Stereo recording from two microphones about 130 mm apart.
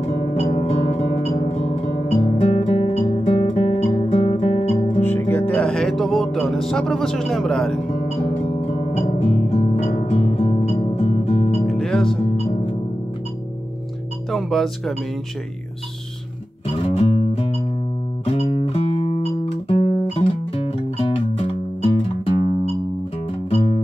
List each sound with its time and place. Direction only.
0.0 s music: 50° left (ahead or behind)
1.3 s guitar: 50° left (ahead or behind)
5.0 s guitar: 15° left (ahead or behind)
5.5 s speech: 5° left (ahead or behind)
7.9 s music: 60° left (ahead or behind)
10.6 s music: 60° left (ahead or behind)
10.9 s music: 50° left (ahead or behind)
11.6 s music: 5° left (ahead or behind)
12.1 s music: 50° left (ahead or behind)
14.3 s speech: centre (ahead or behind)
16.7 s music: 55° left (ahead or behind)